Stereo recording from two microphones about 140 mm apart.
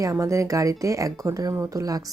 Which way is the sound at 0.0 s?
20° right (ahead or behind).